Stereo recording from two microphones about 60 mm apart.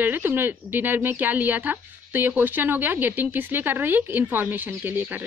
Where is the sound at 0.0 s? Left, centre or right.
Right.